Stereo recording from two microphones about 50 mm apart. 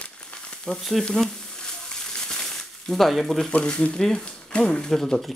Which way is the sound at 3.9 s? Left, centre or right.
Centre.